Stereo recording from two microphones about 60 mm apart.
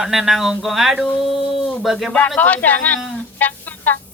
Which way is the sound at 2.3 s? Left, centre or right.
Left.